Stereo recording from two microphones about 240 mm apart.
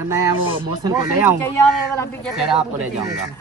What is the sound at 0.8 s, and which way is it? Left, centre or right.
Speech, centre.